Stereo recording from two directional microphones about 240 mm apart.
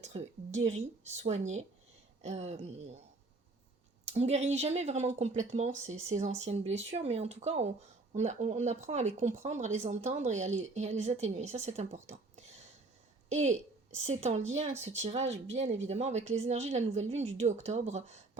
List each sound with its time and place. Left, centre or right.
0.0 s speech: right
4.0 s speech: right
12.0 s a sound: right
13.3 s speech: right